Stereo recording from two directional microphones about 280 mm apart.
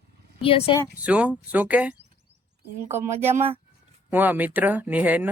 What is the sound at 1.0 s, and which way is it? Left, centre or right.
Speech, centre.